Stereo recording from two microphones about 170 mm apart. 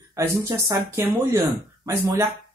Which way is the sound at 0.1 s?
15° right (ahead or behind).